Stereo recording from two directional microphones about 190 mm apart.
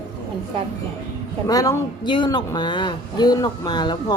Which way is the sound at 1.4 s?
20° left (ahead or behind).